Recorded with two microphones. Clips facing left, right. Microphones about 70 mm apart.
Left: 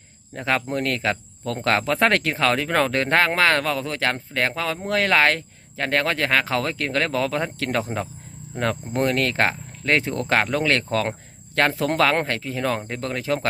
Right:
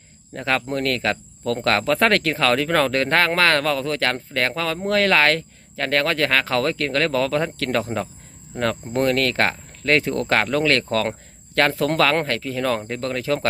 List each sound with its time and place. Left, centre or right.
0.3 s speech: centre